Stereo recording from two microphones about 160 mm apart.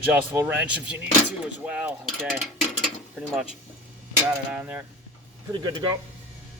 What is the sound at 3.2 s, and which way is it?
Speech, 10° right (ahead or behind).